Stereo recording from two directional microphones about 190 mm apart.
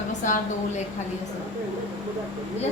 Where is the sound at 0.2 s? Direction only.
40° left (ahead or behind).